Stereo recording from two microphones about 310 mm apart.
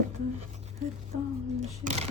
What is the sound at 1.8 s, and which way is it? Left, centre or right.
Speech, right.